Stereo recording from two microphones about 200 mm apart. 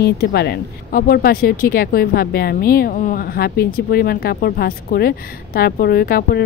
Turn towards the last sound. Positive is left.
turn(degrees=50)  # may be behind; listen again after turning